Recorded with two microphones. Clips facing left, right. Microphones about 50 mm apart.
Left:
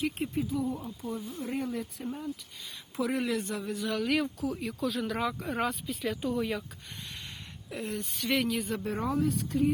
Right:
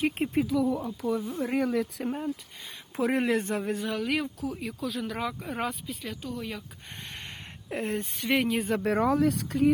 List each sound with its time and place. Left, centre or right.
0.3 s speech: right
2.9 s speech: right
3.8 s speech: centre
6.2 s speech: centre
7.7 s speech: right
8.8 s speech: right